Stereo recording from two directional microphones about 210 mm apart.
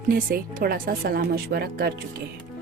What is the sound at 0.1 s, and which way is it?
Speech, 45° right (ahead or behind).